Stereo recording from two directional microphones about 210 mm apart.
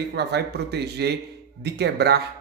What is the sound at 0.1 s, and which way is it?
Speech, 50° right (ahead or behind).